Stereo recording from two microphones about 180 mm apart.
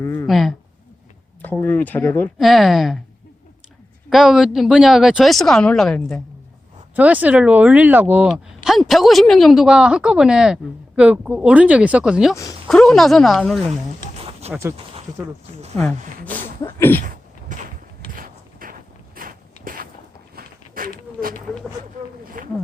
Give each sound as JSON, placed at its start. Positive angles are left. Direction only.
{"t": 0.0, "sound": "speech", "side_deg": 15}
{"t": 0.3, "sound": "speech", "side_deg": 0}
{"t": 2.4, "sound": "speech", "side_deg": 0}
{"t": 4.1, "sound": "speech", "side_deg": -5}
{"t": 6.9, "sound": "speech", "side_deg": -10}
{"t": 14.2, "sound": "a sound", "side_deg": -35}
{"t": 14.5, "sound": "speech", "side_deg": -15}
{"t": 16.6, "sound": "speech", "side_deg": 10}
{"t": 17.0, "sound": "a sound", "side_deg": -50}
{"t": 18.1, "sound": "walk", "side_deg": -50}
{"t": 21.2, "sound": "a sound", "side_deg": -10}
{"t": 22.2, "sound": "a sound", "side_deg": -50}